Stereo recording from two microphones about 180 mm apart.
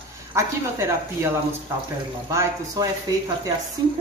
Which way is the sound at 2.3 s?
15° right (ahead or behind).